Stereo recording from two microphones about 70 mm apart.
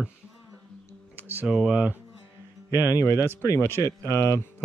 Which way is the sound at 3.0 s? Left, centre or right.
Left.